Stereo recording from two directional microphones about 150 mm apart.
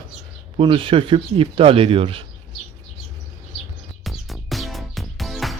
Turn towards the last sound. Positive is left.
turn(degrees=0)  # may be behind; listen again after turning